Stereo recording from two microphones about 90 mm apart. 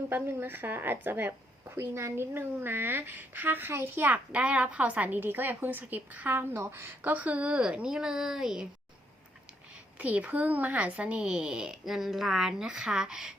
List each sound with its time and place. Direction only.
0.1 s a woman's voice: 25° right (ahead or behind); by 8.6 s 5° right (ahead or behind)
10.0 s a woman's voice: 15° right (ahead or behind)